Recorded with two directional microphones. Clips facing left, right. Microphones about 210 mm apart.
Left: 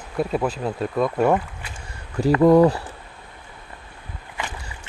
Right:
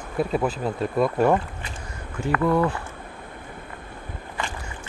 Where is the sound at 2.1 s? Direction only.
35° left (ahead or behind).